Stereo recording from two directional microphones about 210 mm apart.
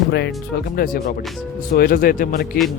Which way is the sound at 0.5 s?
45° left (ahead or behind).